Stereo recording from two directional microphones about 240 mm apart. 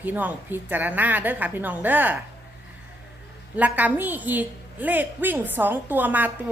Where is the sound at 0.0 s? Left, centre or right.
Centre.